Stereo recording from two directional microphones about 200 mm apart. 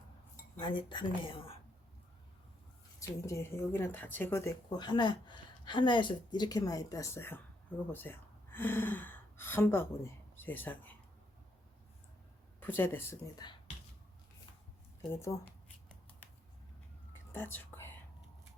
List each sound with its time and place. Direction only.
0.6 s a woman's voice: 25° left (ahead or behind)
3.0 s speech: 15° left (ahead or behind)
12.5 s speech: 10° left (ahead or behind)
15.0 s speech: 10° left (ahead or behind)
17.3 s speech: 10° left (ahead or behind)